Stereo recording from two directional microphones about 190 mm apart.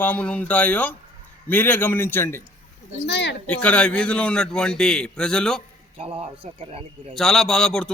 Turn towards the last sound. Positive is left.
turn(degrees=5)  # may be behind; listen again after turning